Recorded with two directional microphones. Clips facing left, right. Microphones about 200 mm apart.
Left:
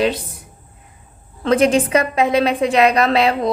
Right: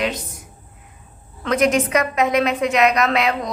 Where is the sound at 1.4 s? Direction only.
30° left (ahead or behind).